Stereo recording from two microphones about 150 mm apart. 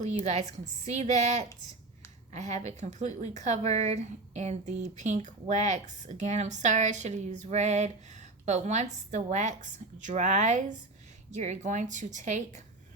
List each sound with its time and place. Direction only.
0.9 s a woman's voice: 50° right (ahead or behind)